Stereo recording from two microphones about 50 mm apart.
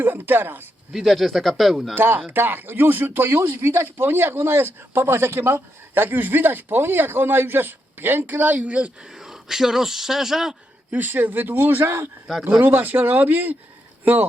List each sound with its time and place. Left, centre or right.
0.0 s speech: right
0.9 s speech: centre
2.0 s speech: right
9.0 s speech: centre
10.9 s speech: right